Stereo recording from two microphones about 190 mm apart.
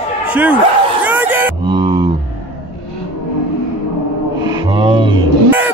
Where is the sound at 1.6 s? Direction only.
25° right (ahead or behind).